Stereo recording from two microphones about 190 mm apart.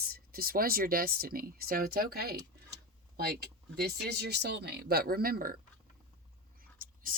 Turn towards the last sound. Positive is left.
turn(degrees=-45)  # may be behind; listen again after turning